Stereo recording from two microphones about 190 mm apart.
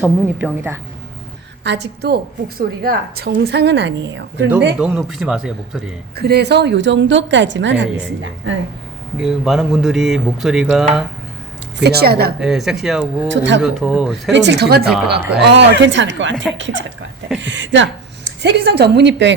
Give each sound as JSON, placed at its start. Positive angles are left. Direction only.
{"t": 0.0, "sound": "a woman's voice", "side_deg": -10}
{"t": 1.6, "sound": "a woman's voice", "side_deg": -65}
{"t": 4.8, "sound": "speech", "side_deg": -5}
{"t": 6.1, "sound": "a woman's voice", "side_deg": -60}
{"t": 9.2, "sound": "speech", "side_deg": 0}
{"t": 11.8, "sound": "a woman's voice", "side_deg": -55}
{"t": 12.4, "sound": "speech", "side_deg": 0}
{"t": 13.2, "sound": "a woman's voice", "side_deg": -70}
{"t": 13.6, "sound": "speech", "side_deg": 0}
{"t": 14.3, "sound": "a woman's voice", "side_deg": -65}
{"t": 18.4, "sound": "a woman's voice", "side_deg": -60}